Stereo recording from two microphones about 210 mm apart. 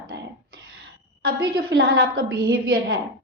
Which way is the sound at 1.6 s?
45° right (ahead or behind).